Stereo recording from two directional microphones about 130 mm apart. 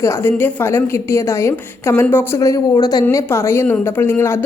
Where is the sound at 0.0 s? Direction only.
20° left (ahead or behind).